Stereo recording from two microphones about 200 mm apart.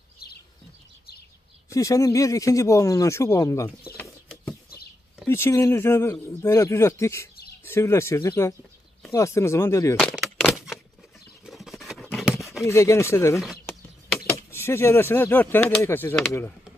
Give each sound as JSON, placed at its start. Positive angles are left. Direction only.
{"t": 1.7, "sound": "speech", "side_deg": 15}
{"t": 3.9, "sound": "bird", "side_deg": 10}
{"t": 5.2, "sound": "speech", "side_deg": 10}
{"t": 9.9, "sound": "crack", "side_deg": 0}
{"t": 11.4, "sound": "a sound", "side_deg": 0}
{"t": 12.6, "sound": "speech", "side_deg": 15}
{"t": 13.4, "sound": "speech", "side_deg": 0}
{"t": 14.2, "sound": "speech", "side_deg": 10}